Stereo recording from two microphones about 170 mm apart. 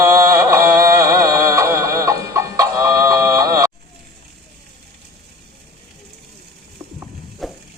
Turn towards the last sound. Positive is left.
turn(degrees=0)  # may be behind; listen again after turning